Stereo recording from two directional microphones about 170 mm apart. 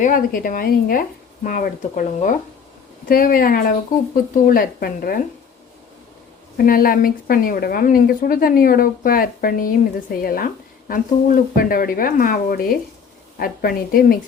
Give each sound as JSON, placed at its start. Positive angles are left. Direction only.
{"t": 0.0, "sound": "speech", "side_deg": 55}
{"t": 6.6, "sound": "speech", "side_deg": 60}